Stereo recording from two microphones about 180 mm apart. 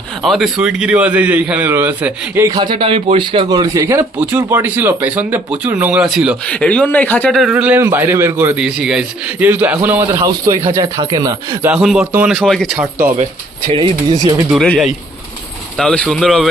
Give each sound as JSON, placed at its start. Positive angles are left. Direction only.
{"t": 0.2, "sound": "speech", "side_deg": 0}
{"t": 2.5, "sound": "speech", "side_deg": -25}
{"t": 10.6, "sound": "a man's voice", "side_deg": -30}
{"t": 11.7, "sound": "speech", "side_deg": 0}
{"t": 12.4, "sound": "speech", "side_deg": 0}
{"t": 13.7, "sound": "a man's voice", "side_deg": -30}
{"t": 14.5, "sound": "speech", "side_deg": 0}